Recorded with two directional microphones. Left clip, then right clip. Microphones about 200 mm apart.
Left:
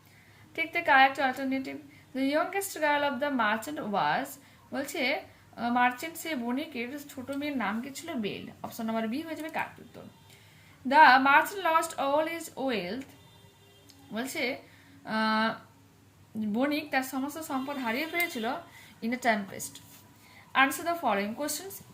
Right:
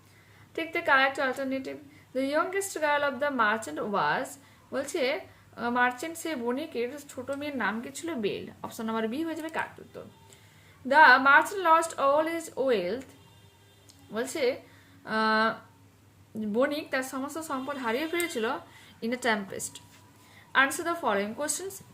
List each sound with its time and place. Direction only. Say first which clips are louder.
0.5 s speech: left 1 dB; 15° right (ahead or behind)
10.8 s speech: right 1 dB; 15° right (ahead or behind)
14.1 s a woman's voice: right 4 dB; 15° right (ahead or behind)